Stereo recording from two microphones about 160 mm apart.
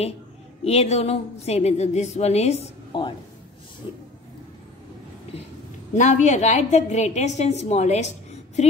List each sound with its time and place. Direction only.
0.7 s a woman's voice: 40° left (ahead or behind)
5.9 s a woman's voice: 50° left (ahead or behind)